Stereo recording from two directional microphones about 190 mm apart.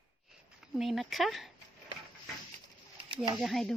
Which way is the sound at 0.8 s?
Centre (ahead or behind).